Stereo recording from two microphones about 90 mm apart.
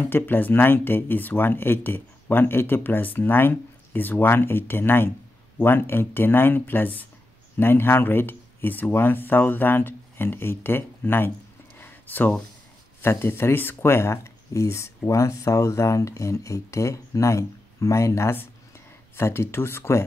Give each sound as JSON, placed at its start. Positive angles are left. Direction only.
{"t": 0.0, "sound": "speech", "side_deg": 25}
{"t": 11.8, "sound": "a sound", "side_deg": 20}
{"t": 13.0, "sound": "speech", "side_deg": 30}